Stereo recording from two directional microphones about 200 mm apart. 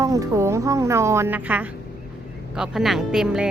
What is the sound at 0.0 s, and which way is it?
Speech, 15° right (ahead or behind).